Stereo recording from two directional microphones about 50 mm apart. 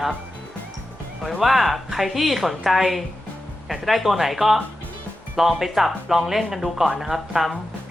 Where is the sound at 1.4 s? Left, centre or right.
Centre.